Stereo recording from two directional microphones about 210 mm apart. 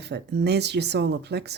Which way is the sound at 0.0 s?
50° right (ahead or behind).